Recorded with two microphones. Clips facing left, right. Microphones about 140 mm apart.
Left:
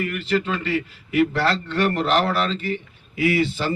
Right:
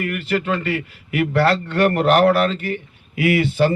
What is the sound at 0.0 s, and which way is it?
A man's voice, 55° right (ahead or behind).